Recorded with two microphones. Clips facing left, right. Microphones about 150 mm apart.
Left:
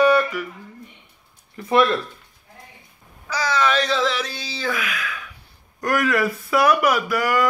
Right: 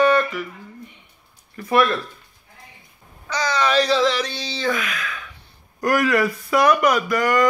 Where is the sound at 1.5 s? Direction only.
20° left (ahead or behind).